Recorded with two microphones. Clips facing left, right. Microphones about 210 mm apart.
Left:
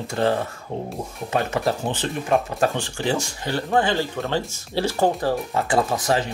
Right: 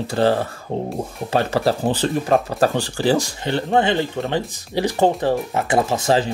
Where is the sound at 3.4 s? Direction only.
25° right (ahead or behind).